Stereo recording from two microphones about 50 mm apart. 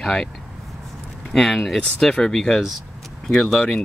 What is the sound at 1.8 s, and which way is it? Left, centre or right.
Speech, centre.